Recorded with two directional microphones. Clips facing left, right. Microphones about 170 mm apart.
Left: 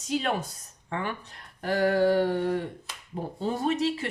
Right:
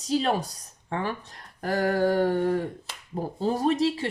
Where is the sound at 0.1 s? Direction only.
35° right (ahead or behind).